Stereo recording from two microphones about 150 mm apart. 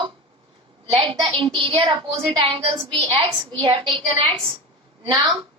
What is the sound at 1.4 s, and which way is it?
A woman's voice, 35° right (ahead or behind).